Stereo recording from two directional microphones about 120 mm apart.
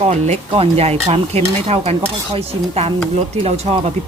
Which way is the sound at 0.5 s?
55° right (ahead or behind).